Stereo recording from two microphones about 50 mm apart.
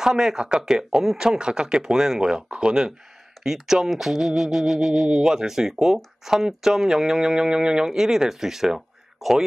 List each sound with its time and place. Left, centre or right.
0.0 s speech: centre